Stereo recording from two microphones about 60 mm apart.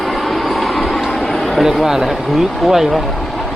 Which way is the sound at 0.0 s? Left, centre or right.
Centre.